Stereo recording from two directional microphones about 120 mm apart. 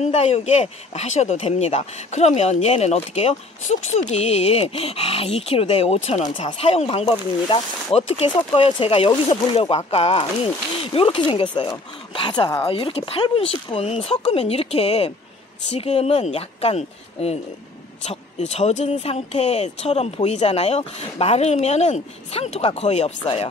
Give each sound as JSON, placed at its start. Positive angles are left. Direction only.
{"t": 0.0, "sound": "speech", "side_deg": 65}